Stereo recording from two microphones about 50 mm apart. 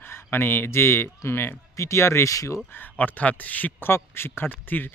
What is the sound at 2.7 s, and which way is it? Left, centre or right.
A man's voice, left.